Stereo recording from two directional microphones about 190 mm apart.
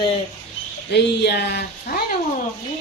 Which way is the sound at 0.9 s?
60° left (ahead or behind).